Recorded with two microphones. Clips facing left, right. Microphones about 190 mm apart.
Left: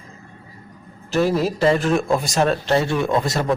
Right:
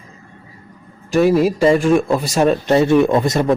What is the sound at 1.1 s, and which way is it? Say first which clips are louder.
A man's voice: right 6 dB; 10° right (ahead or behind).